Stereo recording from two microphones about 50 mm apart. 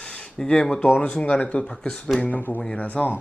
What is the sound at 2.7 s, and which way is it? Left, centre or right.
Speech, left.